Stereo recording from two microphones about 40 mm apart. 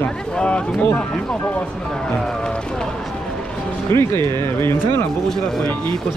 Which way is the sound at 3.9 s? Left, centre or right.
Left.